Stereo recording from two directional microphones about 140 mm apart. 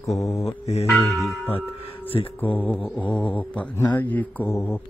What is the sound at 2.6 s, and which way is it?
Speech, 10° left (ahead or behind).